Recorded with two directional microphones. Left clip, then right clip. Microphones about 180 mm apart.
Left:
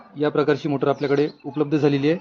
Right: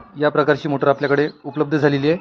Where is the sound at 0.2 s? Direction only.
10° right (ahead or behind).